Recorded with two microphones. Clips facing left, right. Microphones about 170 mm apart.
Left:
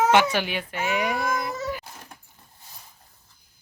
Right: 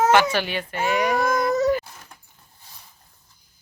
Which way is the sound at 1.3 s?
40° right (ahead or behind).